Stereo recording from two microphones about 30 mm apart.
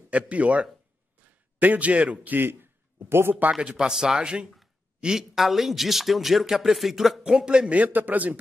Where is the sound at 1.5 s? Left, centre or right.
Right.